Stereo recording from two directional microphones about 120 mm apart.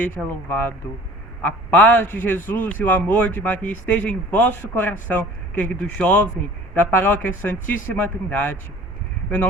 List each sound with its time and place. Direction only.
0.0 s speech: 15° left (ahead or behind)